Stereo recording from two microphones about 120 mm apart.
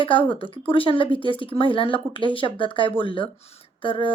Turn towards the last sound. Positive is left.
turn(degrees=45)  # may be behind; listen again after turning